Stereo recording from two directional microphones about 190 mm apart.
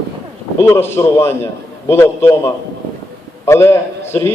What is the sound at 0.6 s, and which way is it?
A man's voice, 15° left (ahead or behind).